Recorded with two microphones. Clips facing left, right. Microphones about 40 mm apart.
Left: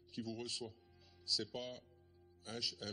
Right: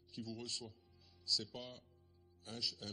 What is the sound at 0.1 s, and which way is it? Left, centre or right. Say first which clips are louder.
A man's voice: left 2 dB; centre.